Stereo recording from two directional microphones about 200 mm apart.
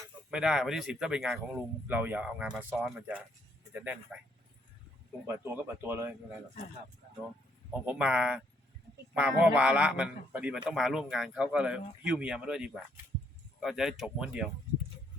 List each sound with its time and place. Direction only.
0.3 s a man's voice: 5° right (ahead or behind)
5.2 s speech: 10° right (ahead or behind)
7.7 s a man's voice: 5° right (ahead or behind)